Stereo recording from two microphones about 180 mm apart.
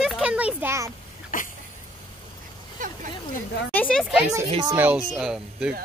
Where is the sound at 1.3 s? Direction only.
50° left (ahead or behind).